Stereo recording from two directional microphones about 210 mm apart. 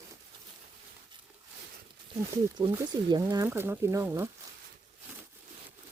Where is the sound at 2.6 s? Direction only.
15° right (ahead or behind).